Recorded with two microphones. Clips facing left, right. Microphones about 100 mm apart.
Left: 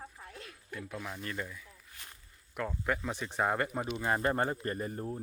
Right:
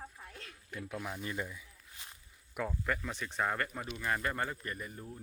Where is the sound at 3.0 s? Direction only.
15° left (ahead or behind).